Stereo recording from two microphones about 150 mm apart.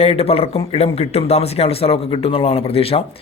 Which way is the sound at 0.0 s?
40° left (ahead or behind).